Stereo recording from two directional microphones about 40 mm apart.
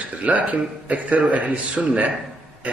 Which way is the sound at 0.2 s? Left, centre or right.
Right.